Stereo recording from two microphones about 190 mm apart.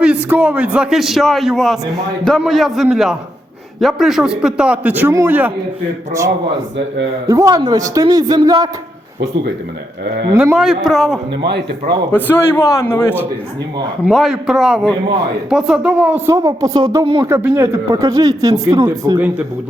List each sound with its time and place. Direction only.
0.0 s a man's voice: 5° right (ahead or behind)
6.7 s a man's voice: 70° right (ahead or behind)
7.3 s speech: 15° right (ahead or behind)
10.3 s a man's voice: 5° right (ahead or behind)
12.1 s a man's voice: 10° left (ahead or behind)
14.0 s a man's voice: centre (ahead or behind); by 19.2 s 20° right (ahead or behind)